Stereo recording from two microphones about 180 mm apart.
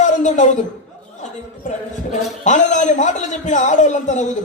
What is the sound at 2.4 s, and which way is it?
A man's voice, 45° left (ahead or behind).